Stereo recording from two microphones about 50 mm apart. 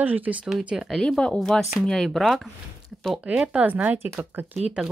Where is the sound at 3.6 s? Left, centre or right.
Right.